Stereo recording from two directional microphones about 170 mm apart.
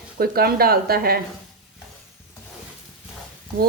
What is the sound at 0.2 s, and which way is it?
Speech, 60° right (ahead or behind).